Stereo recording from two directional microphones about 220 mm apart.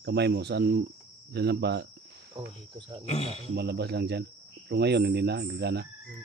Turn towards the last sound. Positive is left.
turn(degrees=-50)  # may be behind; listen again after turning